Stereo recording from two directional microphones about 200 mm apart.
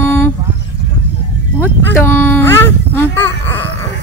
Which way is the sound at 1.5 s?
10° left (ahead or behind).